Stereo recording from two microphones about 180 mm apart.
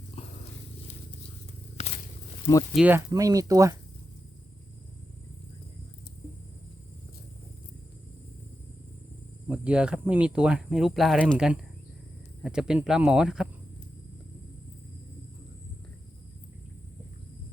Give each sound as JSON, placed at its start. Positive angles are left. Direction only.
{"t": 0.2, "sound": "a sound", "side_deg": 35}
{"t": 1.8, "sound": "walk", "side_deg": 35}
{"t": 2.7, "sound": "speech", "side_deg": -10}
{"t": 3.1, "sound": "speech", "side_deg": -20}
{"t": 9.5, "sound": "speech", "side_deg": -5}